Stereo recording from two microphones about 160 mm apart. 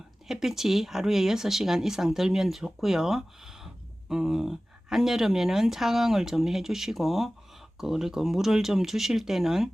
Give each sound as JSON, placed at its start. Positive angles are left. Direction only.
{"t": 0.3, "sound": "speech", "side_deg": -5}